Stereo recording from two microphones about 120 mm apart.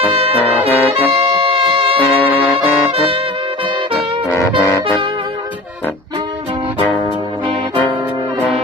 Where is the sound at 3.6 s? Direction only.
45° right (ahead or behind).